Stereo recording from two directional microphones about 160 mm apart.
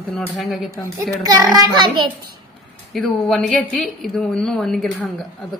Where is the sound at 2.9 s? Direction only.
5° left (ahead or behind).